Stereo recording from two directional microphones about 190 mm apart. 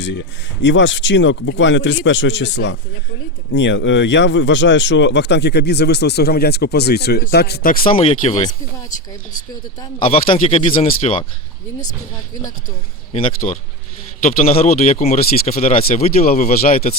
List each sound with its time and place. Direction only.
0.6 s a man's voice: 70° left (ahead or behind); by 7.9 s 50° left (ahead or behind)
7.9 s speech: 30° left (ahead or behind)
10.1 s speech: 30° left (ahead or behind)
13.4 s speech: 35° left (ahead or behind)
15.8 s speech: 55° left (ahead or behind)